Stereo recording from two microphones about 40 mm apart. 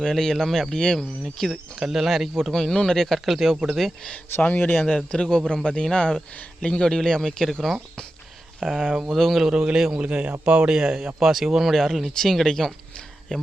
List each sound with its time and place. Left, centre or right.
0.0 s speech: centre
1.8 s speech: centre
2.5 s speech: centre
3.2 s speech: centre
4.4 s speech: left
5.1 s speech: centre
8.8 s a man's voice: centre
9.1 s speech: centre
9.5 s a man's voice: right
9.9 s a man's voice: right
11.2 s speech: centre
11.7 s speech: centre
13.3 s speech: left